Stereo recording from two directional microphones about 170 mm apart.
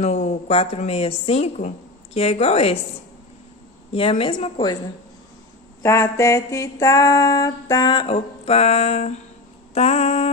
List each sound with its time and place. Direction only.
0.0 s a woman's voice: 40° left (ahead or behind)
3.9 s a woman's voice: 35° left (ahead or behind)
5.8 s a sound: 15° left (ahead or behind); by 9.2 s 40° left (ahead or behind)
9.8 s a woman's voice: 40° left (ahead or behind)